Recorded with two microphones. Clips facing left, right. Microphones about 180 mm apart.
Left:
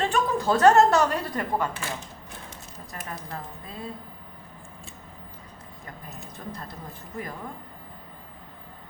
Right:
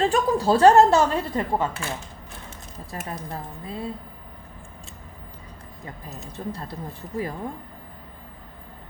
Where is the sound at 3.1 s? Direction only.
30° right (ahead or behind).